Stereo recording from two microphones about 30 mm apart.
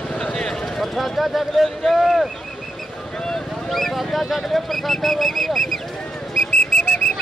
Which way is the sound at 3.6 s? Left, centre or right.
Centre.